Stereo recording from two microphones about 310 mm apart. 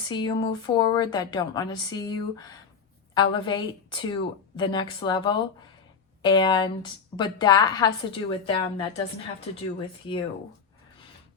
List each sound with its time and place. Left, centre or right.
0.1 s a woman's voice: centre